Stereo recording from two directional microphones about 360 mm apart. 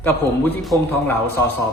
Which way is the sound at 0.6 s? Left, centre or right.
Centre.